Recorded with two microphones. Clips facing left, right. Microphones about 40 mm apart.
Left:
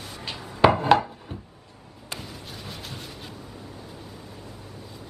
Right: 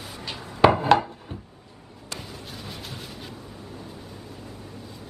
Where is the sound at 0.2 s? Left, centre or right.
Centre.